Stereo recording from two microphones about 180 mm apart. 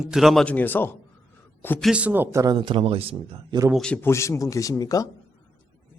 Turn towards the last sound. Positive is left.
turn(degrees=20)  # may be behind; listen again after turning